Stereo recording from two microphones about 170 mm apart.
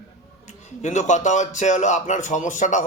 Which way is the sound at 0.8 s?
45° left (ahead or behind).